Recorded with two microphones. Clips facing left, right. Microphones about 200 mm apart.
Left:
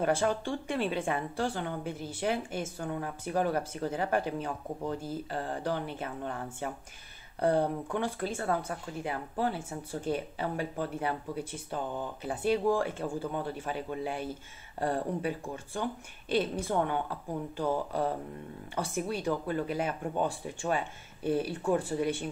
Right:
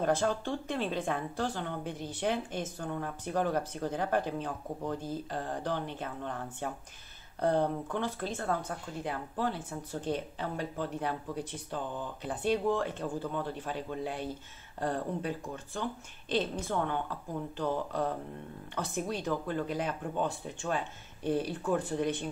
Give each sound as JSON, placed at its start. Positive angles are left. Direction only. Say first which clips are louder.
{"t": 0.0, "sound": "speech", "louder": "left 1 dB", "side_deg": 10}